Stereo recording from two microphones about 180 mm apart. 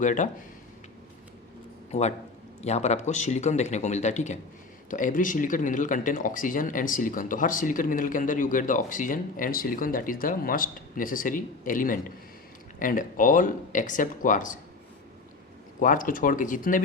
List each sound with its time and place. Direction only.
0.0 s speech: 45° left (ahead or behind)
1.9 s a man's voice: 40° left (ahead or behind)
15.8 s speech: 50° left (ahead or behind)